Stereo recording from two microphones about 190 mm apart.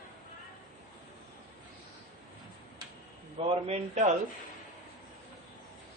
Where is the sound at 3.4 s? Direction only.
30° right (ahead or behind).